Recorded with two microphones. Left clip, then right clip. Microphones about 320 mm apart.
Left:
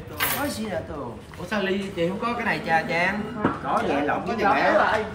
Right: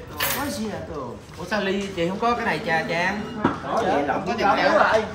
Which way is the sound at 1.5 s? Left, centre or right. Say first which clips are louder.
Right 1 dB; centre.